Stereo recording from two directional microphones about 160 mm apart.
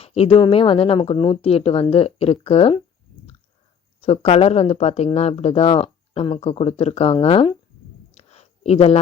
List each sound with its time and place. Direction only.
0.0 s speech: 40° left (ahead or behind)
4.0 s speech: 40° left (ahead or behind)
8.1 s a sound: 40° left (ahead or behind)